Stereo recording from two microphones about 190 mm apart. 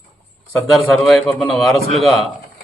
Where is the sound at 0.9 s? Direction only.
Centre (ahead or behind).